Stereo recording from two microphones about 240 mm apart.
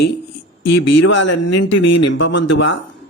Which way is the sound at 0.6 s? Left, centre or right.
Left.